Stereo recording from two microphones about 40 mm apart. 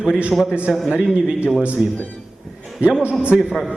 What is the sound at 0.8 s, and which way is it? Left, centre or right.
A man's voice, right.